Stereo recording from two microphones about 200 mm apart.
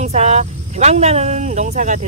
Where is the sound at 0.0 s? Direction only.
35° right (ahead or behind).